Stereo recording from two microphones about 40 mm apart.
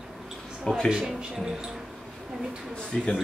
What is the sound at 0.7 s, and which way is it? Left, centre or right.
Speech, centre.